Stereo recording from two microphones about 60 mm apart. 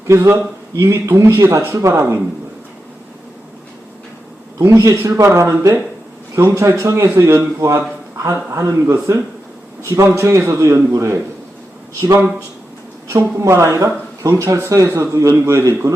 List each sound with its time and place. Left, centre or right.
0.1 s a man's voice: right
1.4 s a man's voice: right
4.8 s a man's voice: right
13.1 s a man's voice: right
14.4 s a man's voice: right